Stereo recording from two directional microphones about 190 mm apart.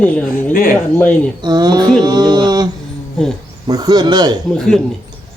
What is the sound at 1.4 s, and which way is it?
Speech, 20° right (ahead or behind).